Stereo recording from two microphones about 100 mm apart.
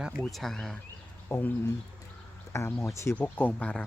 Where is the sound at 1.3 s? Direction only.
20° left (ahead or behind).